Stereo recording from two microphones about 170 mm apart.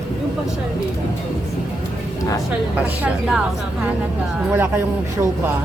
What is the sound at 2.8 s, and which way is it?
Speech, 10° right (ahead or behind).